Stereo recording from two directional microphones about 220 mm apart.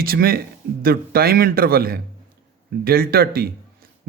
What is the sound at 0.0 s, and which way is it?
Speech, 40° right (ahead or behind).